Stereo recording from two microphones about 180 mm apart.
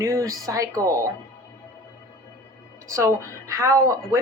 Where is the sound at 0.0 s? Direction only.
15° right (ahead or behind).